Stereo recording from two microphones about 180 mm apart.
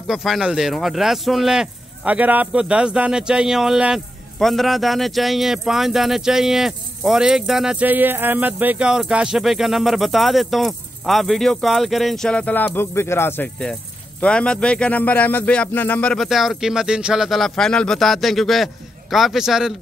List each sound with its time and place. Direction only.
0.1 s speech: centre (ahead or behind)